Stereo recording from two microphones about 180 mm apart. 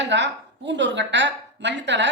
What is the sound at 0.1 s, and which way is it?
A woman's voice, 80° right.